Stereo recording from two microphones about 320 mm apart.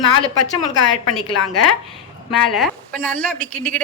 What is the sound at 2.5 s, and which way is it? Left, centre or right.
A woman's voice, centre.